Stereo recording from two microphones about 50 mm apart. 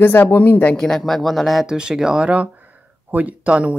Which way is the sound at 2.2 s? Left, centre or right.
Right.